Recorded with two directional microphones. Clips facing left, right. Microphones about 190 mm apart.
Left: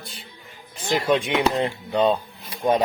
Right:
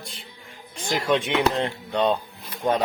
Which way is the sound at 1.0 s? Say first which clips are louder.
Even; 10° left (ahead or behind).